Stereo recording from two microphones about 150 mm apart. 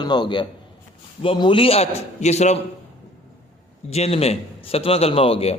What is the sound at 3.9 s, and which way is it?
A man's voice, 45° left (ahead or behind).